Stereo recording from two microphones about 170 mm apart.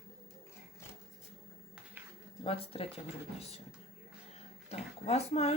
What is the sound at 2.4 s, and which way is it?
Speech, 35° left (ahead or behind).